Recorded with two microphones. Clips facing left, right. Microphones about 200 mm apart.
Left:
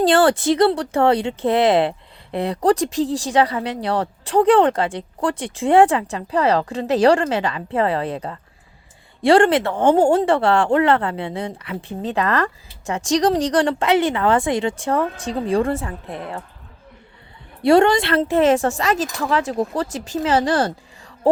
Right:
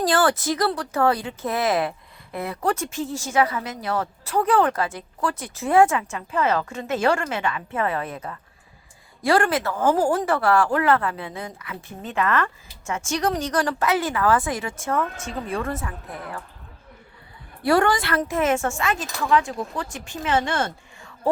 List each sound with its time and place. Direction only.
0.0 s speech: 30° left (ahead or behind)
17.6 s speech: 25° left (ahead or behind)